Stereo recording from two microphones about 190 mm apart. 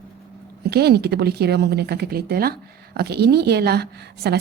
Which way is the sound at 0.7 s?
55° right (ahead or behind).